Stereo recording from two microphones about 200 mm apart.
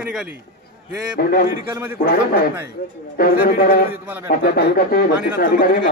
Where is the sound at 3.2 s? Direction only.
45° left (ahead or behind).